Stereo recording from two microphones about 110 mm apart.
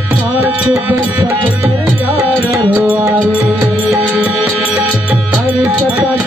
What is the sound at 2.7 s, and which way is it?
Music, 20° right (ahead or behind).